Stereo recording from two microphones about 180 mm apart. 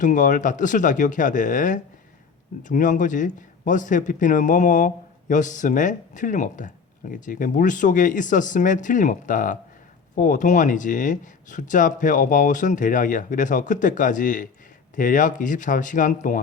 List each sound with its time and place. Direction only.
0.0 s speech: 45° left (ahead or behind)